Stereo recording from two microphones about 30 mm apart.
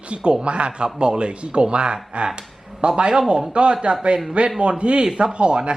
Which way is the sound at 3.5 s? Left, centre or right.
Right.